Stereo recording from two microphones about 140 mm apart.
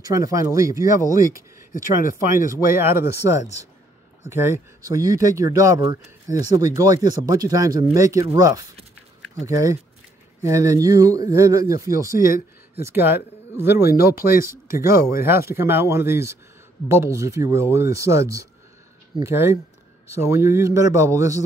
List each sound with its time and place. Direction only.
0.0 s speech: 25° right (ahead or behind)
2.5 s speech: 15° right (ahead or behind)
12.3 s speech: 90° left
12.8 s speech: 15° right (ahead or behind)